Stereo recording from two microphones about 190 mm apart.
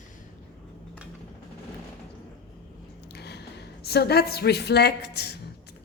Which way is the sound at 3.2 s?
60° left (ahead or behind).